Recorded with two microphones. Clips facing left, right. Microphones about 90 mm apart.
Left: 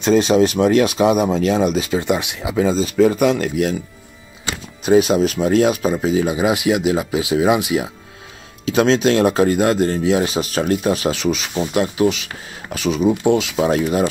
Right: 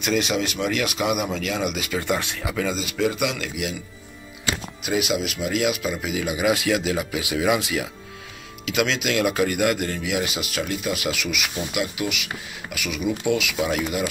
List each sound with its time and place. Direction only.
0.0 s speech: 35° left (ahead or behind)
4.8 s speech: 35° left (ahead or behind)
8.6 s speech: 35° left (ahead or behind)